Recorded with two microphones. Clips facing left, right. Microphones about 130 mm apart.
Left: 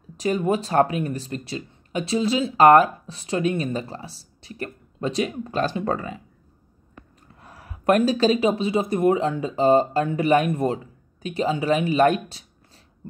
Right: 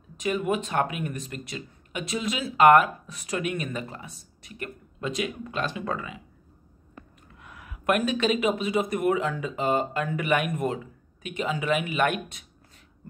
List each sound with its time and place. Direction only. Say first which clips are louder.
0.2 s speech: left 4 dB; 35° left (ahead or behind)
7.3 s speech: left 2 dB; 35° left (ahead or behind)